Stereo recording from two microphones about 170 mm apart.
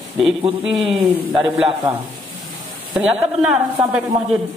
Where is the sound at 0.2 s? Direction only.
Centre (ahead or behind).